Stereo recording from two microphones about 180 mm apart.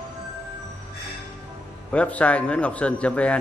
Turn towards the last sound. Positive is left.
turn(degrees=5)  # may be behind; listen again after turning